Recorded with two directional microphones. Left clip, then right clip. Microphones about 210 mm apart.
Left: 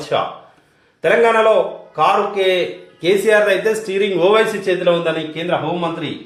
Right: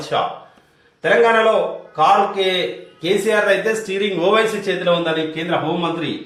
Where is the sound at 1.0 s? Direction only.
45° left (ahead or behind).